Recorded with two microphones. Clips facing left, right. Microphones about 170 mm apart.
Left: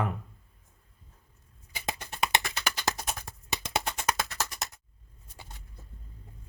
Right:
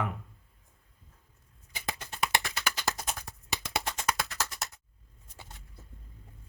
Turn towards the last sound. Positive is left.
turn(degrees=20)  # may be behind; listen again after turning